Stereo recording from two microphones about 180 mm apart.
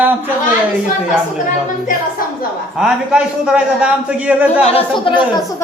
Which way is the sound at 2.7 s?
5° right (ahead or behind).